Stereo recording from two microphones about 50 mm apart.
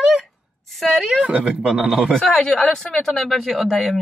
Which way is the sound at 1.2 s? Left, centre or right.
Right.